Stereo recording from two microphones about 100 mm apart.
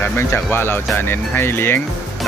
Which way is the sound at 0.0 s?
25° left (ahead or behind).